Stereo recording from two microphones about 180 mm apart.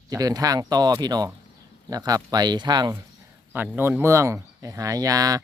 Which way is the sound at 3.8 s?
10° right (ahead or behind).